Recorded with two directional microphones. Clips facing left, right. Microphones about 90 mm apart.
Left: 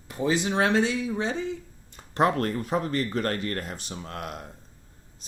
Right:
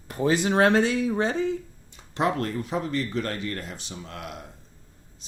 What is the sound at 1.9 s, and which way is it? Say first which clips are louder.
Speech: left 2 dB; 45° left (ahead or behind).